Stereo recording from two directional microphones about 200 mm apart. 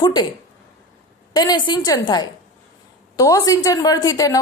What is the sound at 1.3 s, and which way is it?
A woman's voice, 20° left (ahead or behind).